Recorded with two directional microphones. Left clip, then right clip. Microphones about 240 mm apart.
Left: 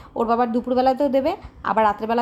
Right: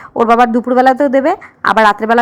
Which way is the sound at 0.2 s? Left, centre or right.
Right.